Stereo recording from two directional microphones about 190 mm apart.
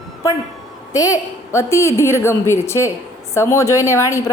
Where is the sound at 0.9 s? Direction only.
15° left (ahead or behind).